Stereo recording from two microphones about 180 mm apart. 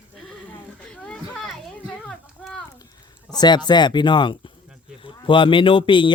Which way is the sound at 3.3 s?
25° left (ahead or behind).